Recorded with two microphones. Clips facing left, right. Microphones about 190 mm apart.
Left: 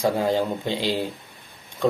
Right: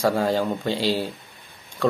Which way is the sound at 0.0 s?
20° left (ahead or behind).